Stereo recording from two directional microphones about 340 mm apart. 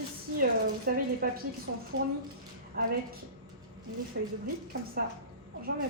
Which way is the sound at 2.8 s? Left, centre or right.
Right.